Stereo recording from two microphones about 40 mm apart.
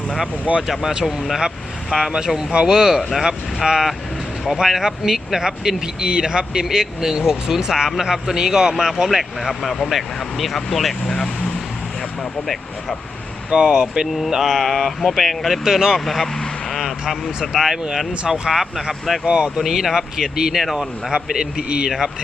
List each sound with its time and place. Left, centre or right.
0.7 s speech: centre
13.5 s speech: right
14.4 s speech: centre
15.6 s speech: centre
16.0 s speech: centre
19.2 s speech: right
19.5 s speech: centre
20.7 s speech: centre
21.8 s speech: centre